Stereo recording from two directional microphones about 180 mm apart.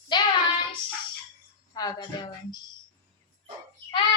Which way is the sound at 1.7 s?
20° left (ahead or behind).